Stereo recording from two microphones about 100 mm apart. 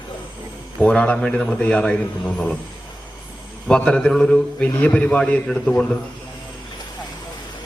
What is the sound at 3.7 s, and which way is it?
A man's voice, 10° left (ahead or behind).